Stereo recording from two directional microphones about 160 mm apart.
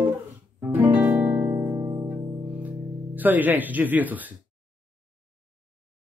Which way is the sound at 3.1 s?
10° right (ahead or behind).